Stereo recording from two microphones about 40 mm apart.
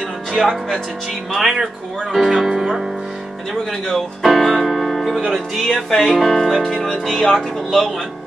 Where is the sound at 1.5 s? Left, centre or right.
Centre.